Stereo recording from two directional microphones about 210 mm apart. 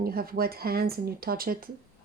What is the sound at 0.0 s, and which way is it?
Speech, 45° right (ahead or behind).